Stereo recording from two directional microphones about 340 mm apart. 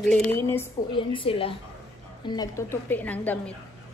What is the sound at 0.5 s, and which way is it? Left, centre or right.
A woman's voice, centre.